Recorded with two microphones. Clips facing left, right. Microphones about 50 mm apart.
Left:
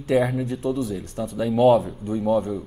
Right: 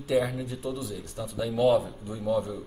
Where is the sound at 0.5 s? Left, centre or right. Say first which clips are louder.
Left 8 dB; left.